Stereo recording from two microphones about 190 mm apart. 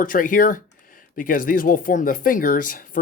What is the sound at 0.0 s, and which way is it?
Speech, 45° left (ahead or behind).